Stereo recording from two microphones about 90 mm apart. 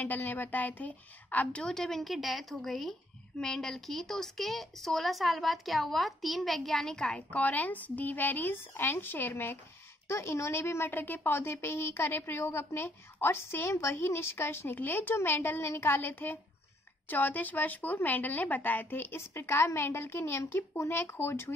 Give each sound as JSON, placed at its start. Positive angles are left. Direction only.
{"t": 0.0, "sound": "a woman's voice", "side_deg": 20}